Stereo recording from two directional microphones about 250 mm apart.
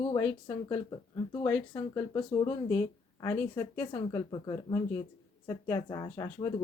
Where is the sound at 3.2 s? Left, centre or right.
Centre.